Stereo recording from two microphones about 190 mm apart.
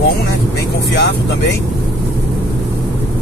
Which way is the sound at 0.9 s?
65° left (ahead or behind).